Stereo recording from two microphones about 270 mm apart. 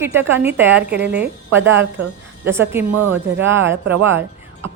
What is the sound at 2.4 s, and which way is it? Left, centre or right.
Speech, centre.